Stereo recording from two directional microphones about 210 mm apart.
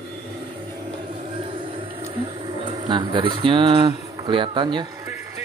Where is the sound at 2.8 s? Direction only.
20° right (ahead or behind).